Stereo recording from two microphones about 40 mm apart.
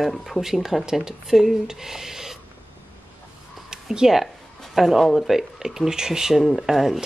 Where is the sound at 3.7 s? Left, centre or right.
Centre.